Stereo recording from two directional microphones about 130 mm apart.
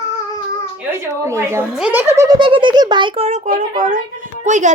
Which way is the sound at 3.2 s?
60° right (ahead or behind).